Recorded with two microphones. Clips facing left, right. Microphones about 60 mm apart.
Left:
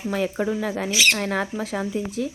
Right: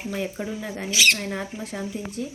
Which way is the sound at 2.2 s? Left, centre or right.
Left.